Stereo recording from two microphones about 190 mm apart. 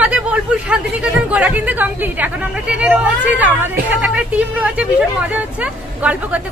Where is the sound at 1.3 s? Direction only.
10° right (ahead or behind).